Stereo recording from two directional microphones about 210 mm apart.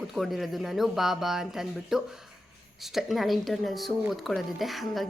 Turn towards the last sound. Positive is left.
turn(degrees=0)  # may be behind; listen again after turning